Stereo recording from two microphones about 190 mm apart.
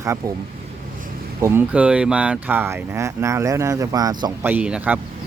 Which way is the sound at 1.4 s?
15° right (ahead or behind).